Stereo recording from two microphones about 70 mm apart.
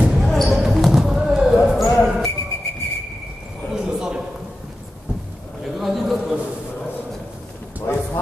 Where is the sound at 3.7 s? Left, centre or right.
Centre.